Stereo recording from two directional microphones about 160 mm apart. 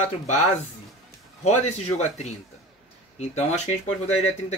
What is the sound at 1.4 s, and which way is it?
Speech, 45° left (ahead or behind).